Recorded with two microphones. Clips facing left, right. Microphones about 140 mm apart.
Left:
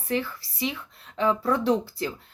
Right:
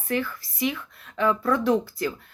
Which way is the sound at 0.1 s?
30° left (ahead or behind).